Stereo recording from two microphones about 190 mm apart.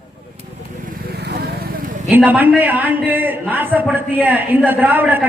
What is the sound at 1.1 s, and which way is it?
Vehicle, 60° right (ahead or behind).